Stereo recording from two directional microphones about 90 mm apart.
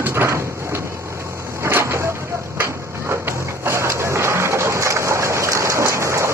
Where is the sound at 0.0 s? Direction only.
30° right (ahead or behind).